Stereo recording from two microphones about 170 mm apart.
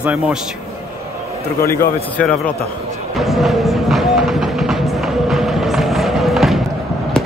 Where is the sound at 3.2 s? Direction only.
Centre (ahead or behind).